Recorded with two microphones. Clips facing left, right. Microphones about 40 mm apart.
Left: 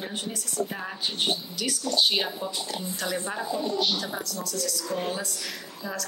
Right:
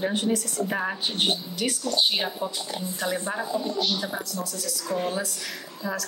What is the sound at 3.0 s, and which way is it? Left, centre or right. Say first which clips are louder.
A woman's voice: right 3 dB; centre.